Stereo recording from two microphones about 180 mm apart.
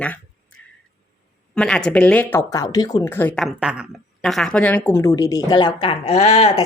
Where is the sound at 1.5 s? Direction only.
5° left (ahead or behind).